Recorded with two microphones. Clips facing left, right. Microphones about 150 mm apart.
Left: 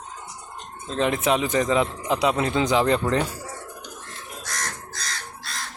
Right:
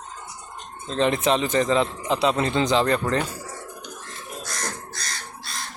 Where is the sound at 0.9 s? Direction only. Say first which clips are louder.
Right 1 dB; 10° left (ahead or behind).